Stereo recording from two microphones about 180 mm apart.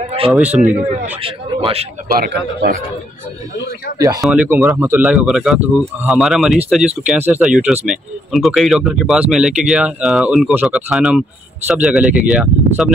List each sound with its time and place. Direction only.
0.0 s speech: 35° right (ahead or behind)
0.3 s a man's voice: 5° right (ahead or behind)
0.6 s speech: 40° right (ahead or behind)
2.1 s a man's voice: 65° right (ahead or behind)
4.2 s speech: 5° right (ahead or behind)